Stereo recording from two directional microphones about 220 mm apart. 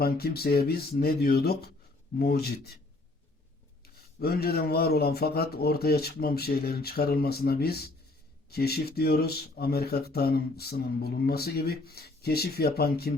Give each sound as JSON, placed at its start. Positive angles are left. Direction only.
{"t": 0.0, "sound": "speech", "side_deg": 45}
{"t": 4.2, "sound": "speech", "side_deg": 45}